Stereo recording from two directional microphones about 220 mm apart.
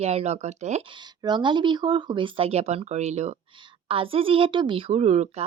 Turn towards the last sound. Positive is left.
turn(degrees=-30)  # may be behind; listen again after turning